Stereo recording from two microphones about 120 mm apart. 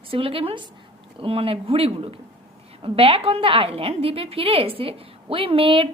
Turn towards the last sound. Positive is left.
turn(degrees=-50)  # may be behind; listen again after turning